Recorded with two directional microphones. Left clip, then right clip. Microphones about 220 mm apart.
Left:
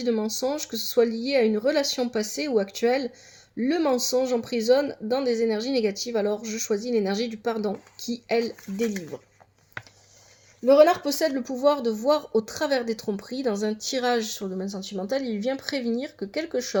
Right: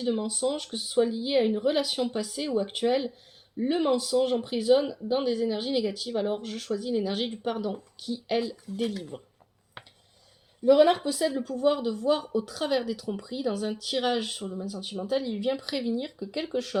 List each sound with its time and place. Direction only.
0.0 s speech: 35° left (ahead or behind)
10.7 s speech: 35° left (ahead or behind)